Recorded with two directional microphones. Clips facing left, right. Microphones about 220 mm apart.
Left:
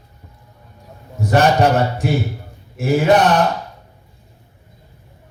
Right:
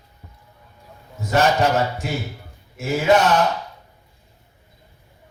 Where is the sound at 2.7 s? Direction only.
55° left (ahead or behind).